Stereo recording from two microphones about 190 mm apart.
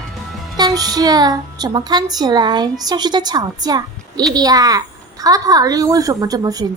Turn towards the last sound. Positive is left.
turn(degrees=-20)  # may be behind; listen again after turning